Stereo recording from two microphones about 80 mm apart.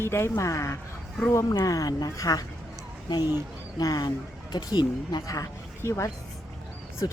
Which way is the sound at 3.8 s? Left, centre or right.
Left.